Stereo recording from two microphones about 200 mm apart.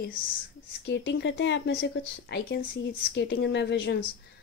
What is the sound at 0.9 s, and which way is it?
Speech, 60° left (ahead or behind).